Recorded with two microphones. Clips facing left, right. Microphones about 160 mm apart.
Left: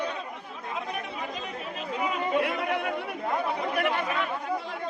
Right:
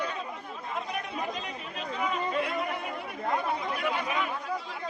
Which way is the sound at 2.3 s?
65° left (ahead or behind).